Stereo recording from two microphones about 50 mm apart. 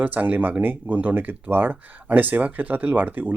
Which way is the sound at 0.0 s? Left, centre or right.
Right.